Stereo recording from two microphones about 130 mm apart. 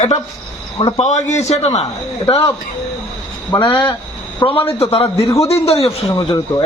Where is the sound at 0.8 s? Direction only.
40° left (ahead or behind).